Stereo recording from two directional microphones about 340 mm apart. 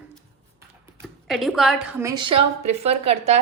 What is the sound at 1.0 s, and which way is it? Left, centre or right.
A woman's voice, centre.